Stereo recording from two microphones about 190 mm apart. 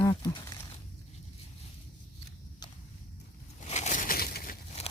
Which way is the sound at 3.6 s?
35° left (ahead or behind).